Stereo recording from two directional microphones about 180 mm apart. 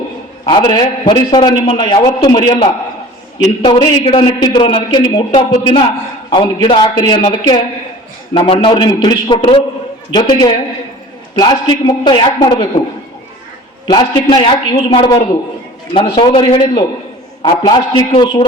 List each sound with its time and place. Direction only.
0.4 s a man's voice: 25° left (ahead or behind)
13.9 s a man's voice: 25° left (ahead or behind)